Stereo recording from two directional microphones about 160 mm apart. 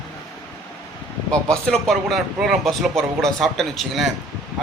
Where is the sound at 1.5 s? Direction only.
Centre (ahead or behind).